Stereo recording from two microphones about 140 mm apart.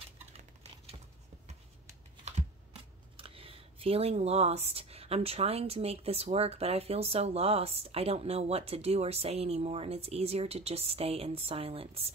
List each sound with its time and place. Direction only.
3.2 s speech: 40° right (ahead or behind)